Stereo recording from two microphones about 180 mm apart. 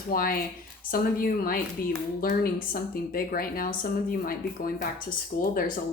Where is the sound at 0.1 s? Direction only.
55° left (ahead or behind).